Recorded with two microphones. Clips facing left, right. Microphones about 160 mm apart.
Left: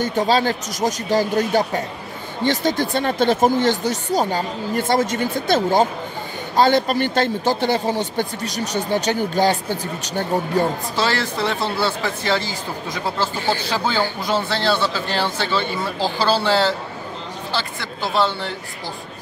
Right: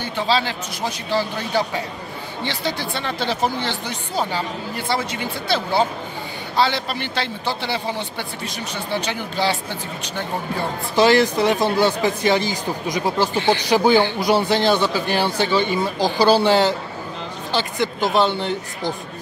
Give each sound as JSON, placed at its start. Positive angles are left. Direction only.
{"t": 0.0, "sound": "speech", "side_deg": 45}
{"t": 11.0, "sound": "speech", "side_deg": -15}